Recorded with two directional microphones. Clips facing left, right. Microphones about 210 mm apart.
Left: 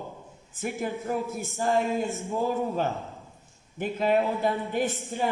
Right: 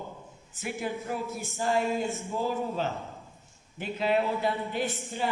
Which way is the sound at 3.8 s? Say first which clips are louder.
Left 3 dB; 45° left (ahead or behind).